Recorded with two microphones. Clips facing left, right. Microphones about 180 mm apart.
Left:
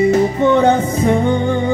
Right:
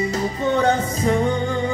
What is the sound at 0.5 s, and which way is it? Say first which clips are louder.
Music: left 6 dB; 30° left (ahead or behind).